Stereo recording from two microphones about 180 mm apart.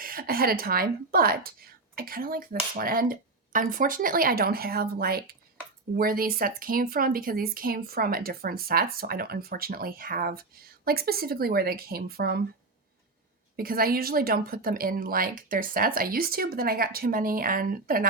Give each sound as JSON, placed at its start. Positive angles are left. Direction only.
{"t": 0.0, "sound": "speech", "side_deg": -55}
{"t": 13.6, "sound": "a woman's voice", "side_deg": -55}